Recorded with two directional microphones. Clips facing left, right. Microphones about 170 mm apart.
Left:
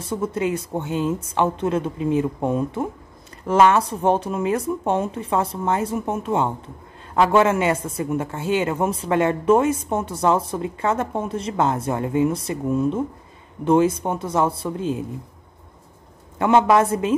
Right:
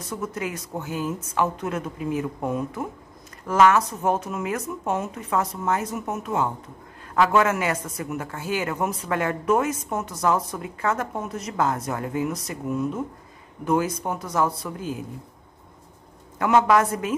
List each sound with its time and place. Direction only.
0.0 s speech: 30° left (ahead or behind)
16.3 s speech: 25° left (ahead or behind)